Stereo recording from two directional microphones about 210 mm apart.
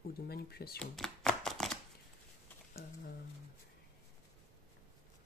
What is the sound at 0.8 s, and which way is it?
Chopping, centre (ahead or behind).